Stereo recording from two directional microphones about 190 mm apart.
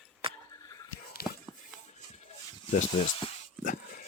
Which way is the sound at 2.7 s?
35° left (ahead or behind).